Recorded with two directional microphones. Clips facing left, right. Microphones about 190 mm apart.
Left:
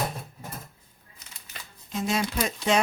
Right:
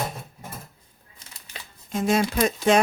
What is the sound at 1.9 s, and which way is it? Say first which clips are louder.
Speech: right 5 dB; 50° right (ahead or behind).